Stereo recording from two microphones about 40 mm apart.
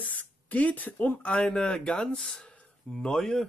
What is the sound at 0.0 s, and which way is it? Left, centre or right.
Speech, left.